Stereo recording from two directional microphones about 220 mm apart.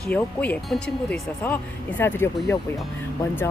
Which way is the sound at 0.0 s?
5° left (ahead or behind).